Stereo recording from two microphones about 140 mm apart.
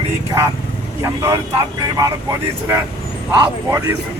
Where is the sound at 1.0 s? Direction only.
20° right (ahead or behind).